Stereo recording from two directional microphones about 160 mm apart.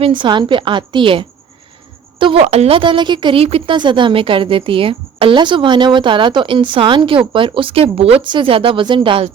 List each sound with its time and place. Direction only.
0.0 s a woman's voice: 30° right (ahead or behind)